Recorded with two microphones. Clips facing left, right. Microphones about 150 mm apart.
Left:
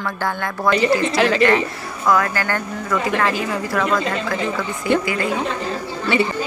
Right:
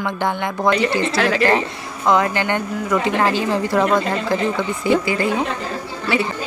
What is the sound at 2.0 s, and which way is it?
A woman's voice, 20° right (ahead or behind).